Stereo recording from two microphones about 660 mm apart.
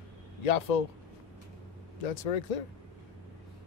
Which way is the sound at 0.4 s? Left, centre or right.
Left.